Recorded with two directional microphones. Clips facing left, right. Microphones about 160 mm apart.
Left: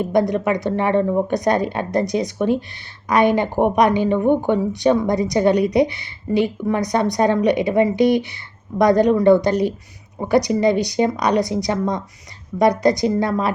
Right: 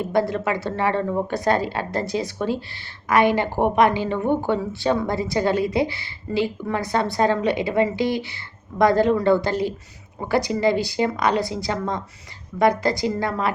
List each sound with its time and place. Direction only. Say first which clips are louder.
0.1 s a woman's voice: left 3 dB; 20° left (ahead or behind)